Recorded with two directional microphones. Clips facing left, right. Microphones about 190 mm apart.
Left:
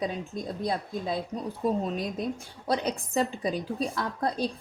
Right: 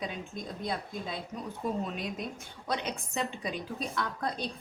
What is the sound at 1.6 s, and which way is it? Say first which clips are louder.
A woman's voice: left 6 dB; 35° left (ahead or behind).